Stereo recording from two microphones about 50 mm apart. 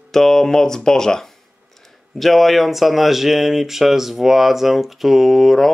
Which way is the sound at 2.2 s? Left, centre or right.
Centre.